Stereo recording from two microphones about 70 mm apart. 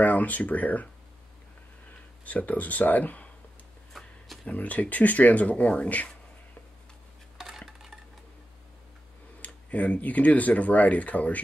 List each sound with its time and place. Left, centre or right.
0.0 s speech: left
2.2 s speech: left
3.9 s a sound: centre
4.5 s speech: left
7.3 s dishes: centre
9.4 s speech: left